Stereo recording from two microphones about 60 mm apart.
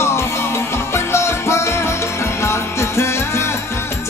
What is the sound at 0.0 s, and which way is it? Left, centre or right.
Music, left.